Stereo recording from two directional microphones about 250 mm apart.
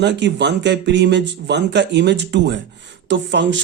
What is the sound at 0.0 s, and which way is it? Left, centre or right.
Speech, right.